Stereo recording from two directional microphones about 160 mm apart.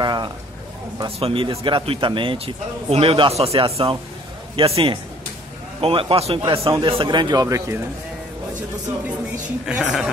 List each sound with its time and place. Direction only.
0.0 s a sound: 25° right (ahead or behind)
1.0 s a man's voice: 35° right (ahead or behind); by 7.8 s 20° right (ahead or behind)
9.7 s speech: 5° right (ahead or behind)